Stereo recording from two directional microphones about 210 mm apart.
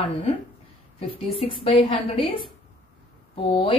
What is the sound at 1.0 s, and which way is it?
A woman's voice, 25° left (ahead or behind).